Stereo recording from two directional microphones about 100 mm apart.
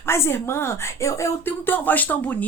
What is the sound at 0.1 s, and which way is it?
A woman's voice, 25° left (ahead or behind).